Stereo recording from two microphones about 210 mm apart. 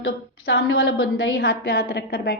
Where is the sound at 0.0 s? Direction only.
65° left (ahead or behind).